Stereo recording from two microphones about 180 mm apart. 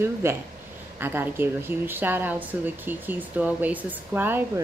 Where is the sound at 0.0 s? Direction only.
15° right (ahead or behind).